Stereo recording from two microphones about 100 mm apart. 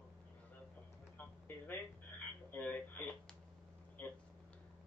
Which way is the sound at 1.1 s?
20° left (ahead or behind).